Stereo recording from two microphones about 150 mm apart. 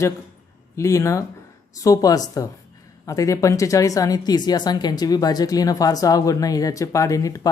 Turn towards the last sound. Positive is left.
turn(degrees=20)  # may be behind; listen again after turning